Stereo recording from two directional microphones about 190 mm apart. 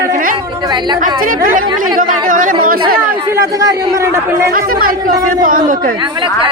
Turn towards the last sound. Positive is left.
turn(degrees=-25)  # may be behind; listen again after turning